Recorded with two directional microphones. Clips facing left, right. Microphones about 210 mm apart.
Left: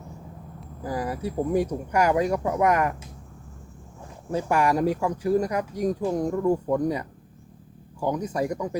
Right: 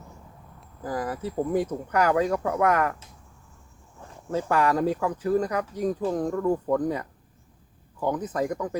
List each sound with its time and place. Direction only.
0.9 s speech: 10° left (ahead or behind)
4.3 s speech: 15° left (ahead or behind)